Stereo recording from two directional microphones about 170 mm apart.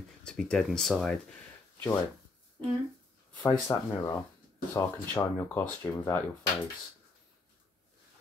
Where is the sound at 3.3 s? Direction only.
15° left (ahead or behind).